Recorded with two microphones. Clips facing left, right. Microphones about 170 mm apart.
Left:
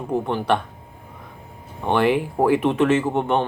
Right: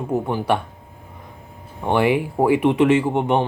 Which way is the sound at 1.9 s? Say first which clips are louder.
Right 1 dB; 10° right (ahead or behind).